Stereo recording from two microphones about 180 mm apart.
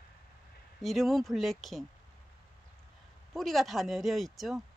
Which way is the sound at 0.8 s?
Centre (ahead or behind).